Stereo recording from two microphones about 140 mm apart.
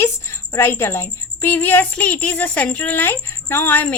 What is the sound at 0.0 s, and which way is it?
A woman's voice, 20° left (ahead or behind).